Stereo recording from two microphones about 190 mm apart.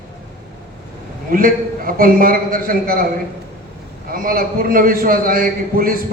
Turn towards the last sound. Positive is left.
turn(degrees=-50)  # may be behind; listen again after turning